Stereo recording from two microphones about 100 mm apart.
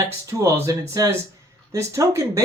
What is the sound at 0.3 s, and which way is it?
Speech, 30° right (ahead or behind).